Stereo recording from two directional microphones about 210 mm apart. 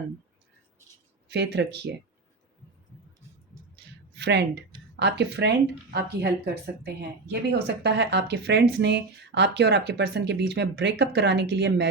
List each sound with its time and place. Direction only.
1.3 s speech: 55° right (ahead or behind)
4.1 s speech: 55° right (ahead or behind)